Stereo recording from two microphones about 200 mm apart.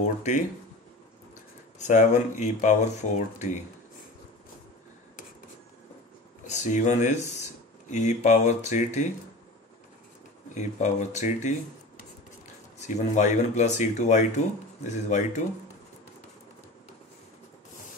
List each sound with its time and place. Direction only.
0.0 s speech: 35° left (ahead or behind)
1.8 s speech: 40° left (ahead or behind)
6.4 s speech: 35° left (ahead or behind)
10.5 s speech: 35° left (ahead or behind)
12.8 s speech: 35° left (ahead or behind)